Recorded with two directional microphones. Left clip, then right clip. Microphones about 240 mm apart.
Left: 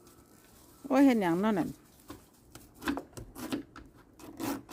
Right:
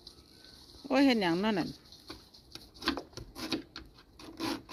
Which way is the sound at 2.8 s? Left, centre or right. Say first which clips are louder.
Right 1 dB; left.